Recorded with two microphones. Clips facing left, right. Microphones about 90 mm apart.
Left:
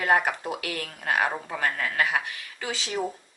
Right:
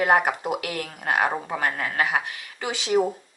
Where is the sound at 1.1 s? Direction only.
30° right (ahead or behind).